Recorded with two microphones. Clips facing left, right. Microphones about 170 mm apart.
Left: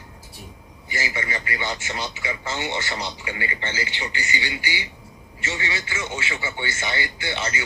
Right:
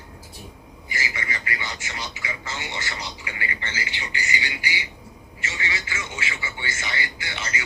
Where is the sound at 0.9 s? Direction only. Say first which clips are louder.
Left 4 dB; 30° left (ahead or behind).